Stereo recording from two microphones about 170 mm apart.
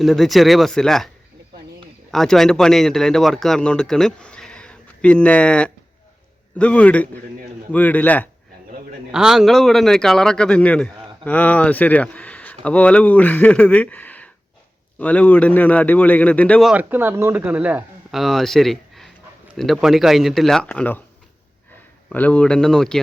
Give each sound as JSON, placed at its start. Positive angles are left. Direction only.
{"t": 0.0, "sound": "a man's voice", "side_deg": 0}
{"t": 9.1, "sound": "a man's voice", "side_deg": -5}
{"t": 22.1, "sound": "a man's voice", "side_deg": 10}